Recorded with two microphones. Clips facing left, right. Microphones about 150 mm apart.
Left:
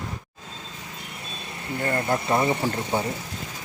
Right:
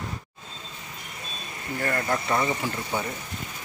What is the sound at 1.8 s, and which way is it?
Speech, 25° left (ahead or behind).